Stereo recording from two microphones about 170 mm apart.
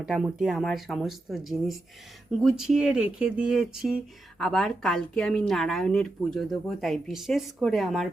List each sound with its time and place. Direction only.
0.0 s speech: 5° right (ahead or behind)